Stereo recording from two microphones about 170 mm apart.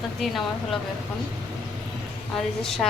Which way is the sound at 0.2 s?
Centre (ahead or behind).